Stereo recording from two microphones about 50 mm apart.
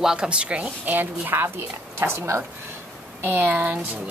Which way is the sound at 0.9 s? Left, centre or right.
Right.